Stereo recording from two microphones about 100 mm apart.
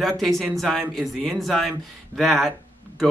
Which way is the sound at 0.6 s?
Centre (ahead or behind).